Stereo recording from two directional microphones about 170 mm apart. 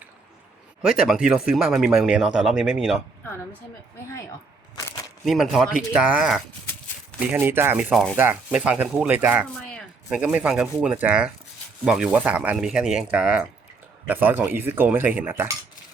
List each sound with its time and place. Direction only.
0.8 s speech: 5° right (ahead or behind)
4.7 s a sound: 20° left (ahead or behind)
5.2 s speech: centre (ahead or behind)